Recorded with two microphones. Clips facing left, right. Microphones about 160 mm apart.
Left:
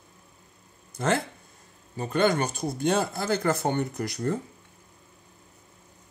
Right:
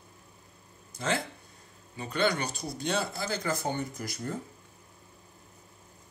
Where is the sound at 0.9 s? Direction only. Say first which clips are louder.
Left 5 dB; 55° left (ahead or behind).